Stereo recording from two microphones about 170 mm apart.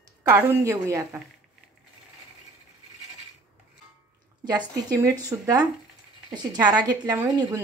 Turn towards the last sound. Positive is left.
turn(degrees=-20)  # may be behind; listen again after turning